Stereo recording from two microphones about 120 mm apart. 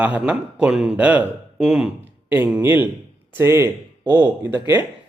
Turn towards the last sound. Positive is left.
turn(degrees=-15)  # may be behind; listen again after turning